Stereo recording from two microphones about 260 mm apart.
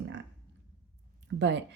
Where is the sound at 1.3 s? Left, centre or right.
Right.